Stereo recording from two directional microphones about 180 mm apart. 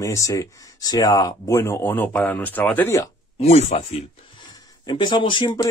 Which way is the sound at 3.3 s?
35° left (ahead or behind).